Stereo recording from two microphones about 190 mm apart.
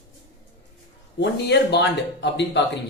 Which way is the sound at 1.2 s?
65° left (ahead or behind).